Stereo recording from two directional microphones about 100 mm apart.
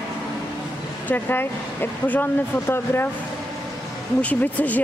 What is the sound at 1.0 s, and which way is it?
Speech, 20° left (ahead or behind).